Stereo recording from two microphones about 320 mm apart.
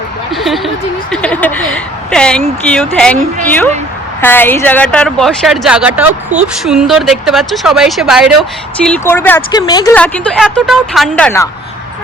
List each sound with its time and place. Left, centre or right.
0.3 s speech: centre
6.3 s speech: right
6.7 s a woman's voice: centre